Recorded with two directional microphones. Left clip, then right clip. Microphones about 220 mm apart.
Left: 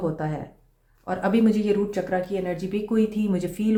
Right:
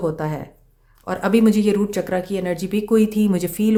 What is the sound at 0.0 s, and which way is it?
Speech, 30° right (ahead or behind).